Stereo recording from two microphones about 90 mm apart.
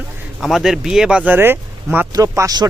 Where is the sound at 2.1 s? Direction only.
40° right (ahead or behind).